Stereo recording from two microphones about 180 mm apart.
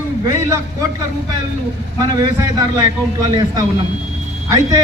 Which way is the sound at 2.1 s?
20° right (ahead or behind).